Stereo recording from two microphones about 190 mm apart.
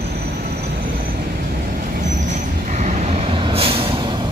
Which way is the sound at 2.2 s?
40° right (ahead or behind).